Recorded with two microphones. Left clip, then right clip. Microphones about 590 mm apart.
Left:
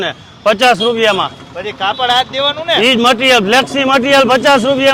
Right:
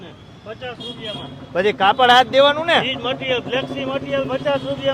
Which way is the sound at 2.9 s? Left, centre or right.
Left.